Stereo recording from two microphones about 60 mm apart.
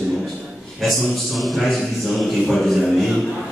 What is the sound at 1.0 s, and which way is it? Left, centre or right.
A man's voice, centre.